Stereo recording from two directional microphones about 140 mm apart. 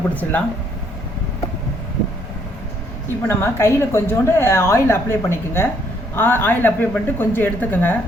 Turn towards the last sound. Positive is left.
turn(degrees=15)  # may be behind; listen again after turning